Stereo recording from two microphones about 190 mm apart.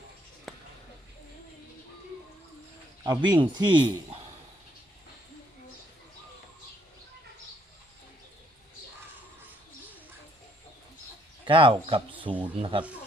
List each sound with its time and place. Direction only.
0.5 s a sound: centre (ahead or behind)
3.0 s speech: 20° right (ahead or behind)
11.4 s speech: 25° right (ahead or behind)